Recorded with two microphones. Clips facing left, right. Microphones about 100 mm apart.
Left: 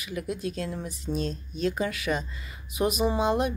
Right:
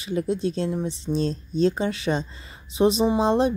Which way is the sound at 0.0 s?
30° right (ahead or behind).